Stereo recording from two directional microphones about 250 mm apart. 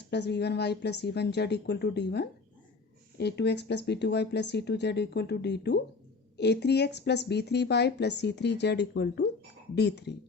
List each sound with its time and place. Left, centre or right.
0.1 s speech: left